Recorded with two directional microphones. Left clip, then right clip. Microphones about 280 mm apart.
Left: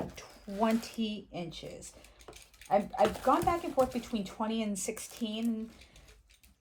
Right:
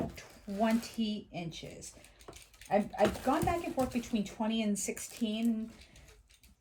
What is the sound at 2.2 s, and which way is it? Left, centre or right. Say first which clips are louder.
Typing: even; centre.